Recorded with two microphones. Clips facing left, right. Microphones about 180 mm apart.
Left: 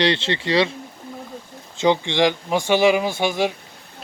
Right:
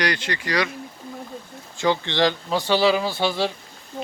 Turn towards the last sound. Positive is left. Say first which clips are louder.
# left 2 dB
turn(degrees=15)  # may be behind; listen again after turning